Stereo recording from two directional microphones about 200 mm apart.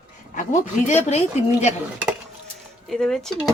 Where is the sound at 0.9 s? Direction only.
35° left (ahead or behind).